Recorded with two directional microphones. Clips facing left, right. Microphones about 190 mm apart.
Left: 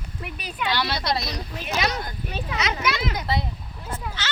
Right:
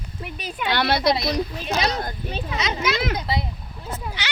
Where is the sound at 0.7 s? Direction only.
55° right (ahead or behind).